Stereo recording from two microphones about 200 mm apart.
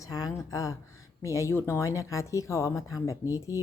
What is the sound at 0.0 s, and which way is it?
Speech, 15° left (ahead or behind).